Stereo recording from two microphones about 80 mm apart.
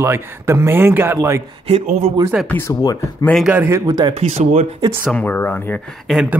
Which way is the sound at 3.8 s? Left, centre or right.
Right.